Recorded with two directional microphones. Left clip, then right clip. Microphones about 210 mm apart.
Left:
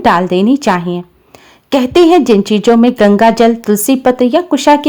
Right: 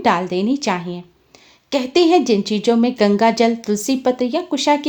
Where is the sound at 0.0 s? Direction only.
30° left (ahead or behind).